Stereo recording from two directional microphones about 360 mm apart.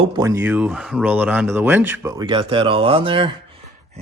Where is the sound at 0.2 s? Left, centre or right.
Centre.